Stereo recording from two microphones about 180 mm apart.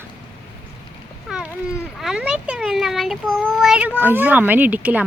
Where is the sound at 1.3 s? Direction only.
5° right (ahead or behind).